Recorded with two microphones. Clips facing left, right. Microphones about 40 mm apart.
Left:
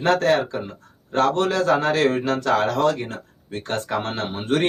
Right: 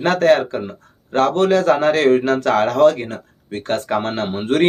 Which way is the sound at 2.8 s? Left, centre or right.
Right.